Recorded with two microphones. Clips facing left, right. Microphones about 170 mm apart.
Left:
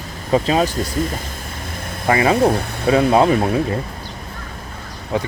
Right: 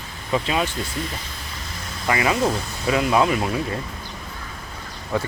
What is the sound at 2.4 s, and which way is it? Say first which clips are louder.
Speech: left 6 dB; 55° left (ahead or behind).